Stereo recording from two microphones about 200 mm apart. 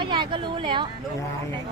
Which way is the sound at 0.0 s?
25° right (ahead or behind).